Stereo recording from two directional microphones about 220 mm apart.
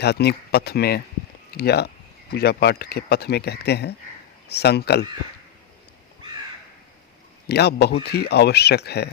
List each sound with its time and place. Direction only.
0.0 s speech: 50° left (ahead or behind)
7.4 s speech: 45° left (ahead or behind)